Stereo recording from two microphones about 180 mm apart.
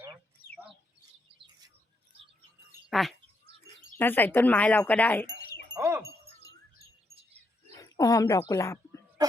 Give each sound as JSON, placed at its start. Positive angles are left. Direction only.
{"t": 2.9, "sound": "bird", "side_deg": 0}
{"t": 3.9, "sound": "speech", "side_deg": 10}
{"t": 5.7, "sound": "wind chime", "side_deg": -15}
{"t": 7.8, "sound": "a sound", "side_deg": 20}